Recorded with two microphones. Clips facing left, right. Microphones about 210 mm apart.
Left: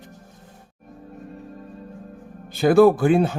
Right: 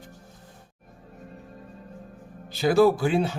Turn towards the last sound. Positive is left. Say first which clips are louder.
# left 5 dB
turn(degrees=50)  # may be behind; listen again after turning